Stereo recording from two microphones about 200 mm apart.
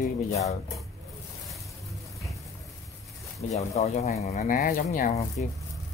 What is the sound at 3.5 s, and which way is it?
Speech, 35° left (ahead or behind).